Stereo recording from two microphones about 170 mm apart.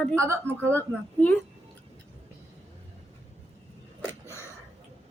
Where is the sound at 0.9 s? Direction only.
5° left (ahead or behind).